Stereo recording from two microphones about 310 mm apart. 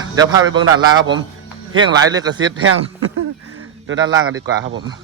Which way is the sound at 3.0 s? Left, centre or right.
Right.